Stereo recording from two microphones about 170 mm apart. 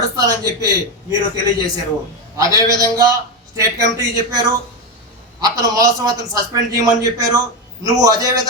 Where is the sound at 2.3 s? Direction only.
20° right (ahead or behind).